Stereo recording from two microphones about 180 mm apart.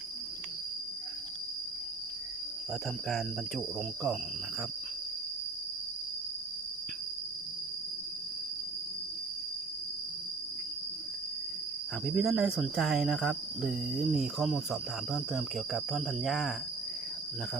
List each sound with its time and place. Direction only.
3.8 s speech: centre (ahead or behind)
12.0 s speech: centre (ahead or behind)